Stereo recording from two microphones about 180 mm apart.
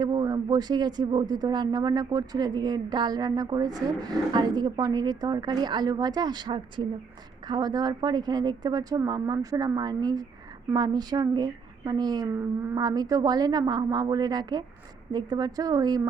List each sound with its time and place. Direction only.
0.0 s speech: 20° right (ahead or behind)